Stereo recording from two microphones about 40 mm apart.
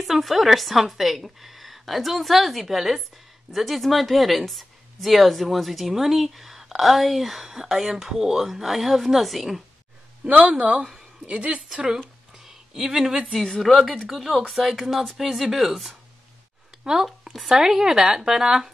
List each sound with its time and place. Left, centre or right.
0.0 s speech: centre
10.2 s a woman's voice: right
12.4 s a sound: centre
13.4 s speech: centre
17.5 s speech: centre